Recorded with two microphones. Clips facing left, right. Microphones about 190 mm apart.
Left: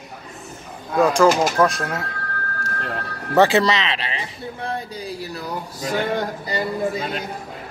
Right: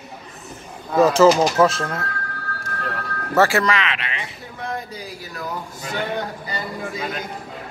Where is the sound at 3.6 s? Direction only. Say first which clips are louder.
Left 1 dB; 30° left (ahead or behind).